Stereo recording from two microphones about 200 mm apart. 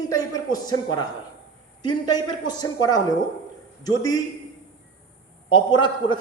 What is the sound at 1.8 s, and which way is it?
A man's voice, 20° left (ahead or behind).